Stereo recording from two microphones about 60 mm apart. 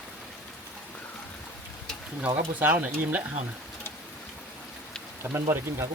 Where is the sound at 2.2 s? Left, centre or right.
Right.